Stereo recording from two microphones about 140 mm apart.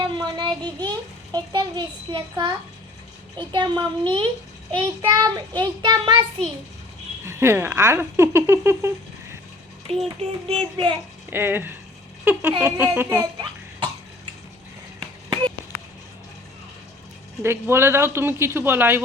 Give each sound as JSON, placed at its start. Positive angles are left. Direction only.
{"t": 0.0, "sound": "child singing", "side_deg": -30}
{"t": 0.8, "sound": "a child's voice", "side_deg": -30}
{"t": 7.3, "sound": "speech", "side_deg": -15}
{"t": 10.2, "sound": "a child's voice", "side_deg": -40}
{"t": 11.3, "sound": "speech", "side_deg": -15}
{"t": 13.4, "sound": "cough", "side_deg": -35}
{"t": 17.4, "sound": "speech", "side_deg": -20}